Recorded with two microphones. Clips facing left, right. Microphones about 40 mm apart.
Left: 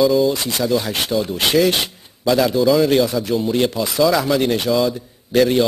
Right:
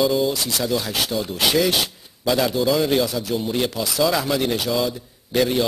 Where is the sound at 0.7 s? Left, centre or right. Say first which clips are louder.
Left 5 dB; centre.